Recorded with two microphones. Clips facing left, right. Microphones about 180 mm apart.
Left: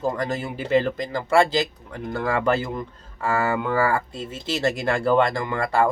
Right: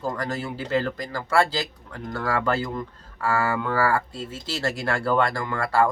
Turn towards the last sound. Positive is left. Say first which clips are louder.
# left 1 dB
turn(degrees=20)  # may be behind; listen again after turning